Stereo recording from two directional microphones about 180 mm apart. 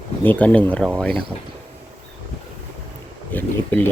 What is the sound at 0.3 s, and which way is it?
Speech, 10° left (ahead or behind).